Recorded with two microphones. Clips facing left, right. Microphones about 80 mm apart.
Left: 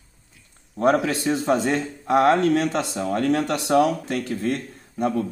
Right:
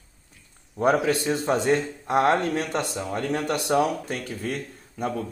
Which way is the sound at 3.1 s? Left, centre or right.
Left.